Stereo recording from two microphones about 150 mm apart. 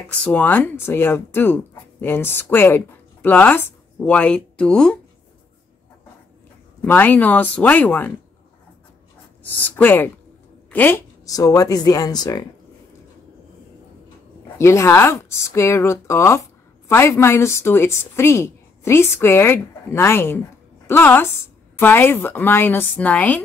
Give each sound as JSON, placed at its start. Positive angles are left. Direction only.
{"t": 0.2, "sound": "speech", "side_deg": 10}
{"t": 6.8, "sound": "speech", "side_deg": 10}
{"t": 9.4, "sound": "a woman's voice", "side_deg": 10}
{"t": 11.2, "sound": "speech", "side_deg": 25}
{"t": 14.6, "sound": "a woman's voice", "side_deg": 20}